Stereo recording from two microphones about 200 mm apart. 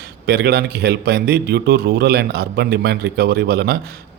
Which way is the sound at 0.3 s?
55° right (ahead or behind).